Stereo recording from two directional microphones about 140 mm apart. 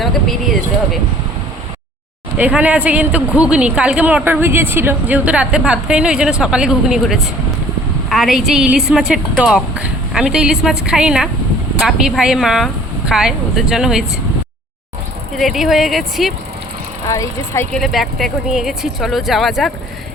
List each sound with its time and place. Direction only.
0.0 s a woman's voice: centre (ahead or behind)
2.4 s a woman's voice: 10° right (ahead or behind)
15.4 s a woman's voice: centre (ahead or behind)
17.1 s speech: 20° left (ahead or behind)
17.7 s a woman's voice: centre (ahead or behind)